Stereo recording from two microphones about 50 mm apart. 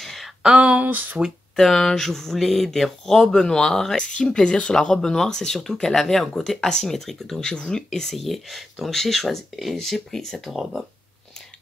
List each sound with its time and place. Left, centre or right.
0.0 s a sound: centre
0.4 s speech: centre
0.7 s speech: right
1.6 s speech: centre
4.0 s speech: left; by 10.8 s centre